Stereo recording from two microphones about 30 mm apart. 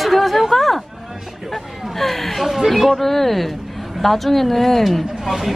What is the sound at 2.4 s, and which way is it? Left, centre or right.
Speech, centre.